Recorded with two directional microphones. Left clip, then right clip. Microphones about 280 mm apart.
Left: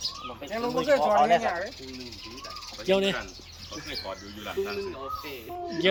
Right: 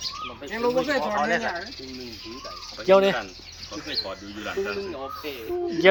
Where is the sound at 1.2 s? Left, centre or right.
Left.